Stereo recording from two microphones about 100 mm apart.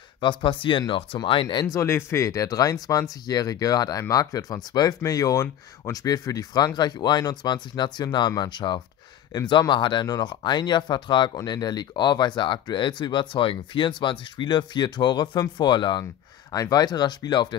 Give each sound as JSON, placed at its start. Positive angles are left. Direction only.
{"t": 0.2, "sound": "speech", "side_deg": 55}
{"t": 1.7, "sound": "speech", "side_deg": 30}